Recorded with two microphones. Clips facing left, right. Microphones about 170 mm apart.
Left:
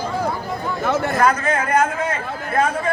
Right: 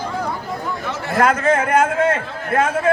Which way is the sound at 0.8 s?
50° left (ahead or behind).